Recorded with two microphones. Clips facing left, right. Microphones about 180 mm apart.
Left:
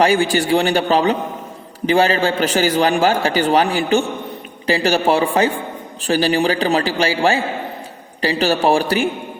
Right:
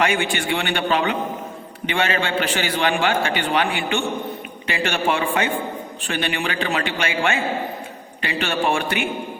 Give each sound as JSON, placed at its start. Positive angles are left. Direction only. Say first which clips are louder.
{"t": 0.0, "sound": "a man's voice", "louder": "left 6 dB", "side_deg": 35}